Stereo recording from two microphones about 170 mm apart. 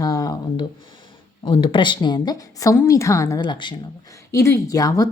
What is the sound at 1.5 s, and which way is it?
A woman's voice, 30° left (ahead or behind).